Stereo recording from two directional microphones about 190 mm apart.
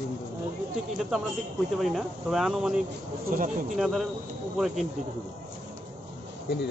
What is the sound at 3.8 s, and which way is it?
Speech, centre (ahead or behind).